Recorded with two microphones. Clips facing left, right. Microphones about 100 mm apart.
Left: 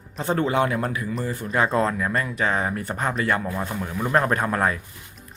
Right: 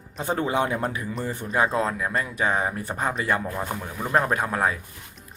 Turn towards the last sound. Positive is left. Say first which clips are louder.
# left 2 dB
turn(degrees=-5)  # may be behind; listen again after turning